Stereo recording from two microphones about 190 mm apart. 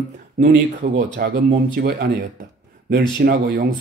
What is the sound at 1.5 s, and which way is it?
Speech, 50° right (ahead or behind).